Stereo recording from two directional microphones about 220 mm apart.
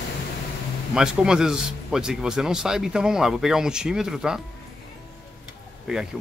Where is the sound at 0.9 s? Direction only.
5° right (ahead or behind).